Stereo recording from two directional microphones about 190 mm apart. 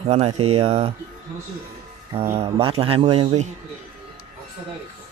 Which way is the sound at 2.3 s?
30° right (ahead or behind).